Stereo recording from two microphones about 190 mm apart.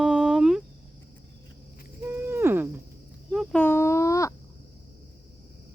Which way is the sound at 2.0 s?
10° right (ahead or behind).